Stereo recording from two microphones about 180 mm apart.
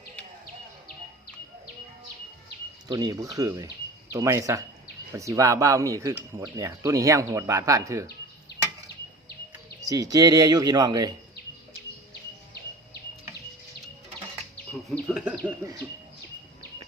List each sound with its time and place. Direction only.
2.9 s speech: 20° right (ahead or behind)
9.8 s speech: 20° right (ahead or behind)
14.7 s speech: centre (ahead or behind)